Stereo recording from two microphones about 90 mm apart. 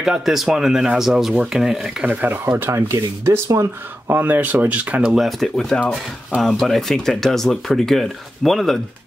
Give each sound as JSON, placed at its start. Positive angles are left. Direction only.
{"t": 0.0, "sound": "speech", "side_deg": -5}
{"t": 2.0, "sound": "speech", "side_deg": -20}
{"t": 4.1, "sound": "speech", "side_deg": -20}
{"t": 5.1, "sound": "speech", "side_deg": 0}